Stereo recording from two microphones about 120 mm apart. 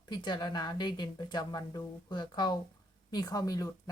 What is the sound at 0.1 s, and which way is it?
Speech, 40° left (ahead or behind).